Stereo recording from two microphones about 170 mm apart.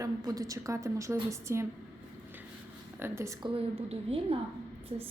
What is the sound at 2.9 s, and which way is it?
Speech, 15° right (ahead or behind).